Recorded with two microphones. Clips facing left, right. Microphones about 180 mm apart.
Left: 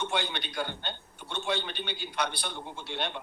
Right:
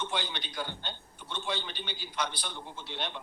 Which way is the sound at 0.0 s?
65° left (ahead or behind).